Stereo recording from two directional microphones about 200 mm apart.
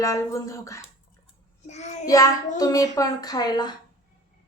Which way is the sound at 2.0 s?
15° left (ahead or behind).